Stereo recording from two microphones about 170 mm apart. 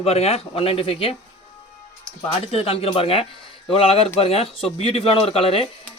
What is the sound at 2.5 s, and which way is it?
Speech, 35° left (ahead or behind).